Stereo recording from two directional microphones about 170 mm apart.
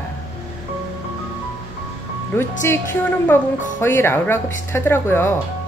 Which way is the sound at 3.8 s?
15° left (ahead or behind).